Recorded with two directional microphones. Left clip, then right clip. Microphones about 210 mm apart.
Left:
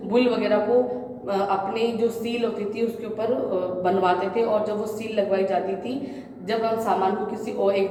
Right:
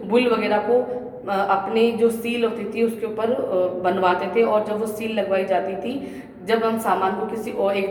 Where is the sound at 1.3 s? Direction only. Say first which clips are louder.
Right 3 dB; 25° right (ahead or behind).